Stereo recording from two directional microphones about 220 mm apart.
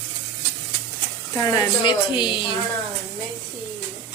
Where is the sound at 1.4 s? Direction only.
15° left (ahead or behind).